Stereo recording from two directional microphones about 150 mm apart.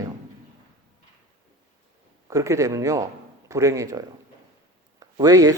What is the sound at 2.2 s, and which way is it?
Speech, 20° right (ahead or behind).